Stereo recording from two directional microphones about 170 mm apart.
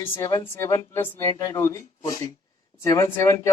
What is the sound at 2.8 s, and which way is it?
Speech, 15° left (ahead or behind).